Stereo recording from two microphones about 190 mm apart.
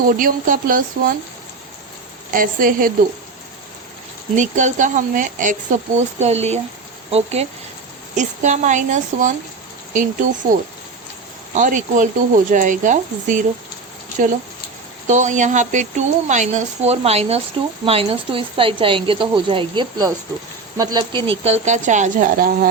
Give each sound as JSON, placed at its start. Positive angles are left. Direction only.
{"t": 0.0, "sound": "speech", "side_deg": -45}
{"t": 2.3, "sound": "speech", "side_deg": -45}
{"t": 4.4, "sound": "a woman's voice", "side_deg": -40}